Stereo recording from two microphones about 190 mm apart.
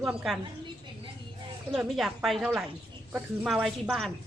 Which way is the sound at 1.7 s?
5° right (ahead or behind).